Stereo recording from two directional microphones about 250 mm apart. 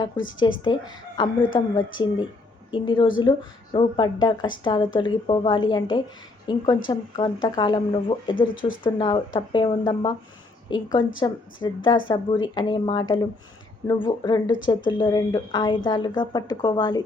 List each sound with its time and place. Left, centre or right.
0.3 s a woman's voice: centre